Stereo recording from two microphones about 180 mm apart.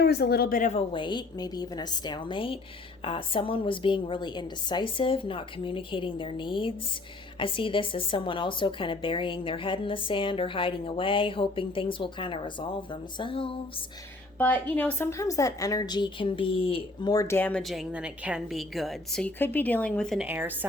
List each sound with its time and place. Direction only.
0.0 s speech: 65° left (ahead or behind)
0.7 s a woman's voice: 30° left (ahead or behind)
14.3 s a woman's voice: 10° left (ahead or behind); by 20.7 s 10° right (ahead or behind)